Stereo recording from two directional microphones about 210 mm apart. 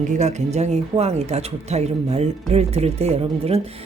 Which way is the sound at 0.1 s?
35° right (ahead or behind).